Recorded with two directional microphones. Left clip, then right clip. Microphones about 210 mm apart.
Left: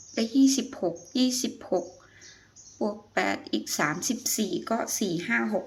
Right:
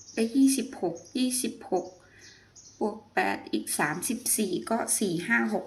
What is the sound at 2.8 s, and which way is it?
Speech, 15° left (ahead or behind).